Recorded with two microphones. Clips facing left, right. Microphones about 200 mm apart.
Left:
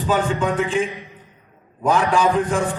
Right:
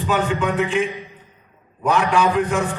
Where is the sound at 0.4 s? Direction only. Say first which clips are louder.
Even; 30° left (ahead or behind).